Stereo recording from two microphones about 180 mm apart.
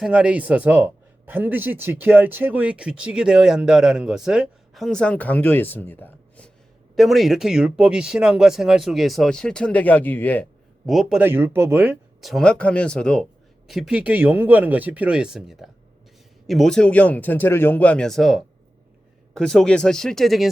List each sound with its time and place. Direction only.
0.0 s speech: 5° right (ahead or behind); by 10.4 s 10° left (ahead or behind)
10.8 s speech: centre (ahead or behind)
11.2 s speech: 10° right (ahead or behind)
12.2 s speech: centre (ahead or behind)